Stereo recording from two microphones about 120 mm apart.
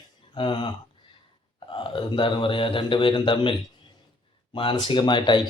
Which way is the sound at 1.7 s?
45° left (ahead or behind).